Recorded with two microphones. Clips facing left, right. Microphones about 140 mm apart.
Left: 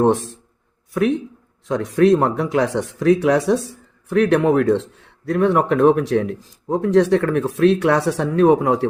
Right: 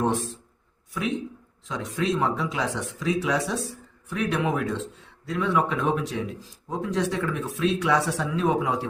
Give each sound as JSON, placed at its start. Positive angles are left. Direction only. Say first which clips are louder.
{"t": 0.0, "sound": "speech", "louder": "left 9 dB", "side_deg": 60}